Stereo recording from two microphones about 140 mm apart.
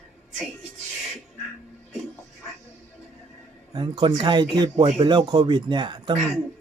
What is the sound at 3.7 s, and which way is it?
Speech, 35° right (ahead or behind).